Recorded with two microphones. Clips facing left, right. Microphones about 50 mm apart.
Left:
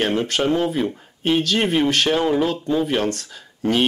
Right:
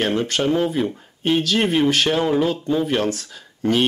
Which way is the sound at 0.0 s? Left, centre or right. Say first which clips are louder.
Even; centre.